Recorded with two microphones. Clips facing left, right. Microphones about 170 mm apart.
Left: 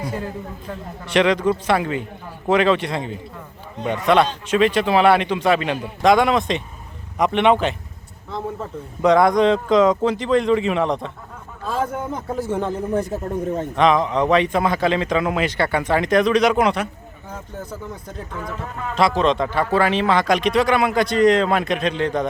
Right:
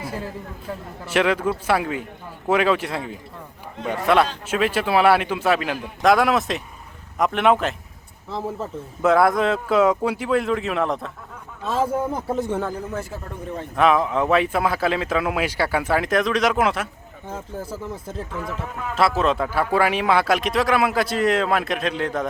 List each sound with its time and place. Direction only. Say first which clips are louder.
1.0 s a man's voice: left 3 dB; 5° right (ahead or behind)
12.5 s speech: left 2 dB; 20° left (ahead or behind)
12.9 s speech: left 8 dB; 35° left (ahead or behind)
13.7 s speech: left 1 dB; 5° right (ahead or behind)
17.9 s speech: right 2 dB; 25° right (ahead or behind)
18.3 s speech: left 3 dB; centre (ahead or behind)